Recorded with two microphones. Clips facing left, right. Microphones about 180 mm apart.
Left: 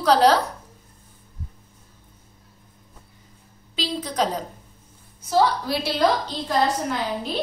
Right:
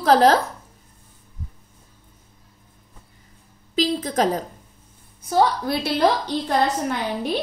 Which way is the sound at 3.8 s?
45° right (ahead or behind).